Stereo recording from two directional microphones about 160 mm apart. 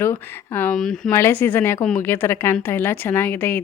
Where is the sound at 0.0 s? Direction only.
15° left (ahead or behind).